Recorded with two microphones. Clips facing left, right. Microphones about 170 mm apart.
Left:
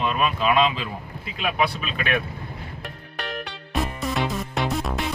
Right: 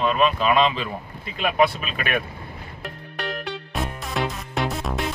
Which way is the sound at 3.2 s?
Centre (ahead or behind).